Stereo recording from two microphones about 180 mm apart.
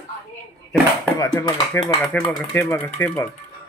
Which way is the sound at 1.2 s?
20° left (ahead or behind).